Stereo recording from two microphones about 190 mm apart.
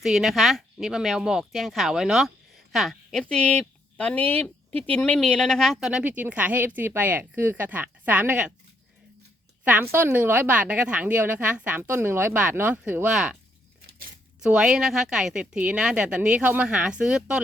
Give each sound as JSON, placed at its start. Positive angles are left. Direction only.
{"t": 0.0, "sound": "speech", "side_deg": 0}
{"t": 9.9, "sound": "a woman's voice", "side_deg": -10}
{"t": 14.4, "sound": "speech", "side_deg": -5}